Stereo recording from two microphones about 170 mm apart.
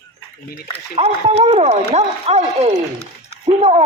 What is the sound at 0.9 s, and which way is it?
Speech, 40° right (ahead or behind).